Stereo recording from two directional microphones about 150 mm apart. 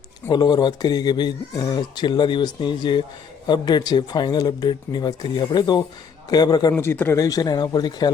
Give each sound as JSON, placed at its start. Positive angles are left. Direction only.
{"t": 0.3, "sound": "speech", "side_deg": 30}